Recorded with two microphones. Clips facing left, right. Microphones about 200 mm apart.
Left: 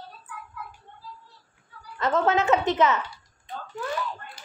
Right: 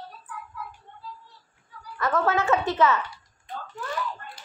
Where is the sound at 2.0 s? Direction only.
20° left (ahead or behind).